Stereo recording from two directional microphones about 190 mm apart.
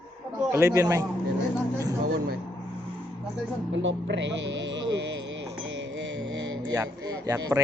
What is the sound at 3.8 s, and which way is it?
Speech, 75° right (ahead or behind).